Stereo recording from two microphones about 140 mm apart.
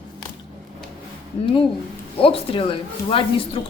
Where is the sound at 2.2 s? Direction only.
40° left (ahead or behind).